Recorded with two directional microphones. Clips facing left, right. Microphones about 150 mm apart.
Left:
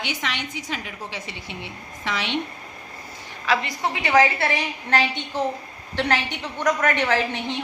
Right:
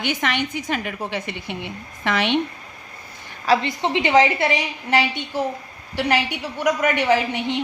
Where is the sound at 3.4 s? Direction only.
25° right (ahead or behind).